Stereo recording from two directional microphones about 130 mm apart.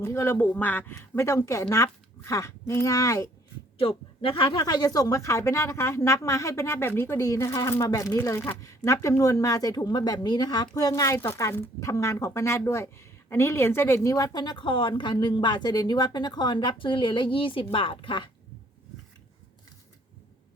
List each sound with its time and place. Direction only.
0.0 s speech: 20° left (ahead or behind)
3.8 s speech: 45° left (ahead or behind)